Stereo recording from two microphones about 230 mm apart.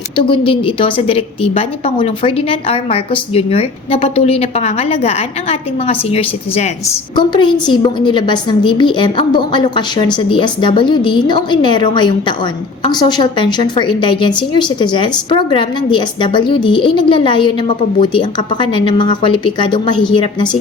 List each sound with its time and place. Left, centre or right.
0.2 s a woman's voice: left